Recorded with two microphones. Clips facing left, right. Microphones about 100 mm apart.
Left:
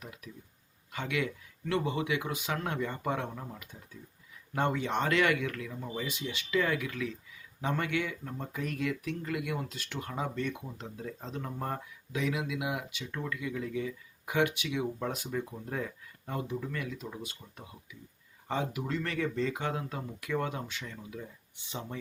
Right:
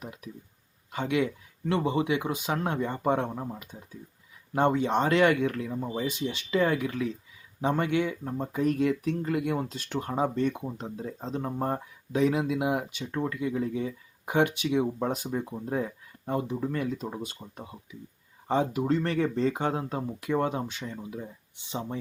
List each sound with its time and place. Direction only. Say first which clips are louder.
0.0 s speech: right 5 dB; 25° right (ahead or behind)